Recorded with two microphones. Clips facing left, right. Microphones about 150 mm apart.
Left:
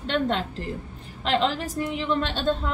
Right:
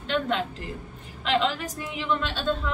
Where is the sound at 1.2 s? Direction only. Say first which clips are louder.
Left 1 dB; 35° left (ahead or behind).